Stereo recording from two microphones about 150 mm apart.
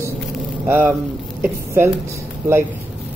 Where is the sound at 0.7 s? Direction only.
10° right (ahead or behind).